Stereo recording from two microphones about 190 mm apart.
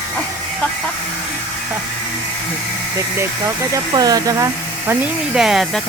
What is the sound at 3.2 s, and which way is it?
Speech, 15° right (ahead or behind).